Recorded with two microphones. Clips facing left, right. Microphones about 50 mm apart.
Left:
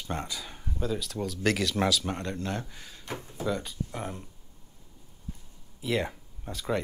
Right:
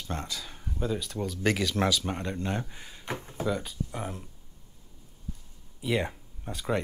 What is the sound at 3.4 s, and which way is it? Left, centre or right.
Speech, centre.